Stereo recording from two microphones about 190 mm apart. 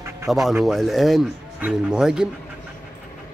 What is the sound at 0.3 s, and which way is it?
Speech, centre (ahead or behind).